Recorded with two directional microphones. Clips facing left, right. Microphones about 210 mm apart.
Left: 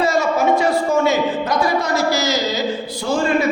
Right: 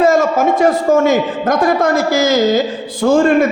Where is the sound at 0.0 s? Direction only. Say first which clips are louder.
Right 5 dB; 50° right (ahead or behind).